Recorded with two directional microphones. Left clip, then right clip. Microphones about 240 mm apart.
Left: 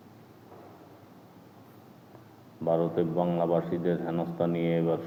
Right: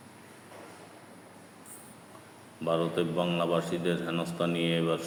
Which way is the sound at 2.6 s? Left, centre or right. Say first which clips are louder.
Left 2 dB; centre.